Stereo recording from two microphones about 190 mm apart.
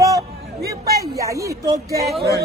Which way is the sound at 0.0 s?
15° right (ahead or behind).